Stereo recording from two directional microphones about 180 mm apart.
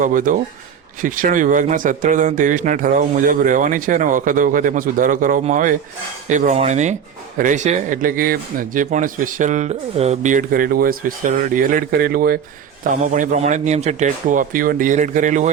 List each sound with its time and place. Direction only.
0.0 s speech: 45° right (ahead or behind)
6.2 s cutlery: 45° right (ahead or behind)
7.3 s speech: 45° right (ahead or behind)
12.8 s speech: 45° right (ahead or behind)